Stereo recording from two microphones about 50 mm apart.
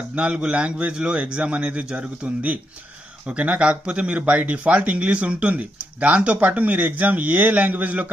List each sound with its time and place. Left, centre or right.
0.2 s speech: right